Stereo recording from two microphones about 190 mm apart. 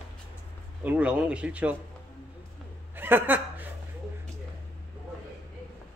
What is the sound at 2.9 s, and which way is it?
Chuckle, 10° right (ahead or behind).